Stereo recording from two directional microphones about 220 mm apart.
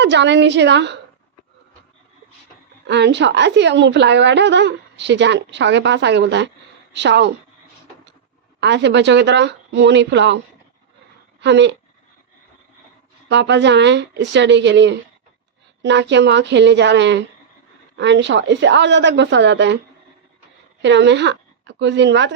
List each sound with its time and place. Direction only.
0.0 s a woman's voice: 50° right (ahead or behind)
2.8 s a woman's voice: 50° right (ahead or behind)
8.6 s a woman's voice: 50° right (ahead or behind)
13.2 s a woman's voice: 55° right (ahead or behind)
20.8 s a woman's voice: 55° right (ahead or behind)